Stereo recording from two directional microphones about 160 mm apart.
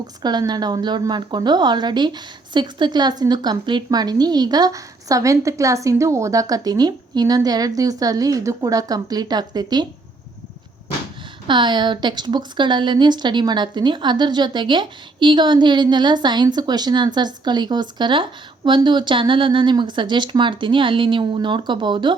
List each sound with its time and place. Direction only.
0.2 s a woman's voice: 25° right (ahead or behind)
11.4 s a woman's voice: 30° right (ahead or behind)